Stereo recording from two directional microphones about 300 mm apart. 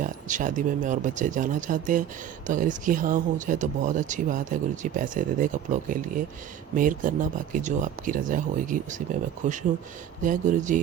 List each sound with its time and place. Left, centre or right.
0.0 s speech: right